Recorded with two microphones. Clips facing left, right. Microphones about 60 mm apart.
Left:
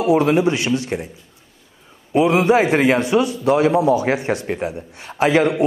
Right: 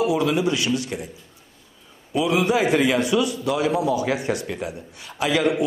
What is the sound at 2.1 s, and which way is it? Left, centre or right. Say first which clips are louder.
A man's voice: left 6 dB; left.